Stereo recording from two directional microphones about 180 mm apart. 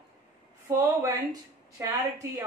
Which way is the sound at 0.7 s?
20° right (ahead or behind).